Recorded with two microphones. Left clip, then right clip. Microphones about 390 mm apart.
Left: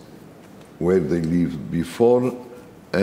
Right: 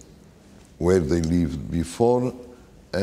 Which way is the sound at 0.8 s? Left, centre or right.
Right.